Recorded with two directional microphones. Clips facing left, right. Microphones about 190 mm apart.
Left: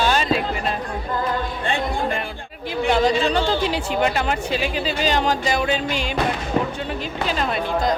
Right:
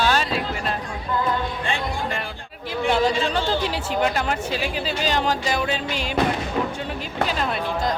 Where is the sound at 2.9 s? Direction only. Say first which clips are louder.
Left 3 dB; 5° right (ahead or behind).